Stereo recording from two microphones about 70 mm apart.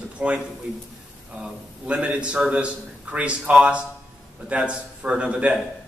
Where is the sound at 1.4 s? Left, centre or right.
Centre.